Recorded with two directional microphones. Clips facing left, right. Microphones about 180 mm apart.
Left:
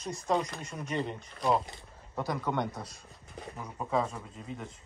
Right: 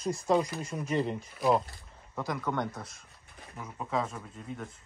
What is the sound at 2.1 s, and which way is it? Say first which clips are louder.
Speech: left 1 dB; 25° left (ahead or behind).